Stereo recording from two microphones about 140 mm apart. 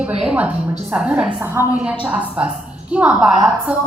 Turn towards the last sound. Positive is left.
turn(degrees=-5)  # may be behind; listen again after turning